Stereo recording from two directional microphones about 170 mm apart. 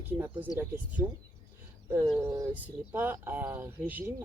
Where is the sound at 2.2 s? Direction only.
20° right (ahead or behind).